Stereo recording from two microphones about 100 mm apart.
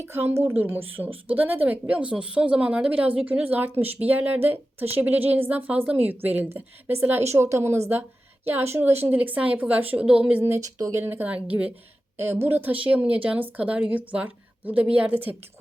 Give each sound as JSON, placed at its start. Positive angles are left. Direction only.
{"t": 0.0, "sound": "a woman's voice", "side_deg": -25}
{"t": 10.4, "sound": "a woman's voice", "side_deg": -25}
{"t": 10.8, "sound": "speech", "side_deg": -35}
{"t": 11.0, "sound": "a woman's voice", "side_deg": -20}